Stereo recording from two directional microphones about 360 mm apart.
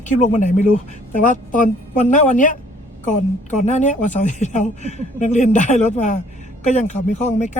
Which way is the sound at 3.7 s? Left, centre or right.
Centre.